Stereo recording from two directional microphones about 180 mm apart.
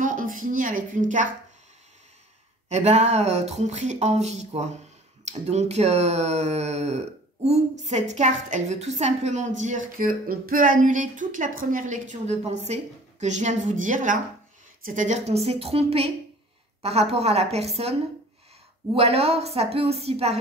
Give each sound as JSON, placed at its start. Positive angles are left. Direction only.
{"t": 0.0, "sound": "a sound", "side_deg": -45}
{"t": 2.7, "sound": "speech", "side_deg": -40}
{"t": 9.6, "sound": "music", "side_deg": -45}
{"t": 13.2, "sound": "speech", "side_deg": -40}
{"t": 18.9, "sound": "speech", "side_deg": -35}